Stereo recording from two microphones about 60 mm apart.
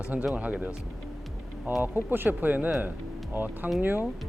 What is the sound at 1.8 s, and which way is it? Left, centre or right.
Speech, right.